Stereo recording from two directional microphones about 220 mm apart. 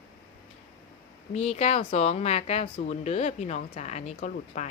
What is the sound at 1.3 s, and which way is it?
A woman's voice, 30° left (ahead or behind).